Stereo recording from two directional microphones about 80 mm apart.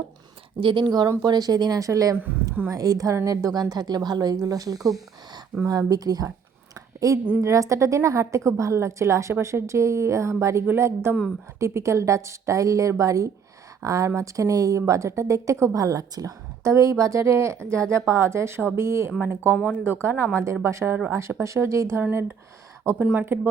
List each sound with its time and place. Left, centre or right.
0.6 s speech: right
1.2 s speech: right
1.8 s speech: right
4.8 s speech: centre
5.6 s speech: right
6.7 s a sound: right
7.4 s speech: right
19.5 s speech: centre
19.8 s speech: right